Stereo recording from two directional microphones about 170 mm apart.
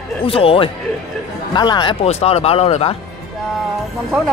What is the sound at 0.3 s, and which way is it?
A man's voice, 35° left (ahead or behind).